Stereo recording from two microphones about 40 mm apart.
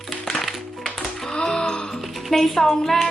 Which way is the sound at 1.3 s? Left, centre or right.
Centre.